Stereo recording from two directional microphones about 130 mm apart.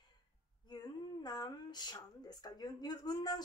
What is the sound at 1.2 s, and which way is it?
A woman's voice, 35° left (ahead or behind).